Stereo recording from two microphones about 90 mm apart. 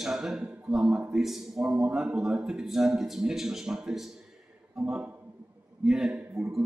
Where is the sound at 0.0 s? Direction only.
5° right (ahead or behind).